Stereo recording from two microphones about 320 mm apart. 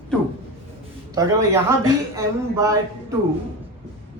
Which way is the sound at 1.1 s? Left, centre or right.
Centre.